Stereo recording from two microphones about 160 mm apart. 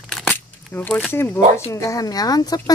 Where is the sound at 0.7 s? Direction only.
10° left (ahead or behind).